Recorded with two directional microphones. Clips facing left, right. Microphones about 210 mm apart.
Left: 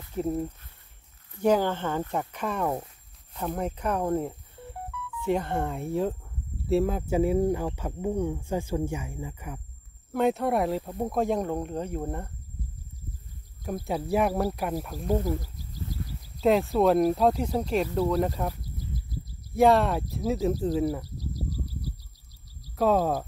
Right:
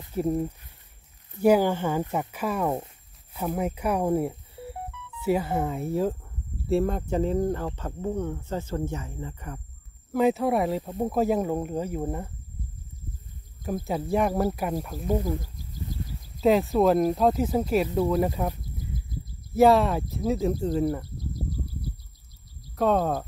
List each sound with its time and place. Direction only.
0.1 s speech: 10° right (ahead or behind)
13.8 s speech: centre (ahead or behind)
16.3 s speech: centre (ahead or behind)
17.8 s speech: 15° right (ahead or behind)
18.1 s speech: 5° right (ahead or behind)
19.5 s speech: centre (ahead or behind)
21.3 s a sound: 55° right (ahead or behind)
22.8 s speech: 5° left (ahead or behind)